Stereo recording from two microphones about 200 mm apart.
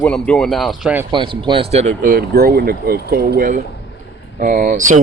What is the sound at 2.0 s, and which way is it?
Speech, 50° right (ahead or behind).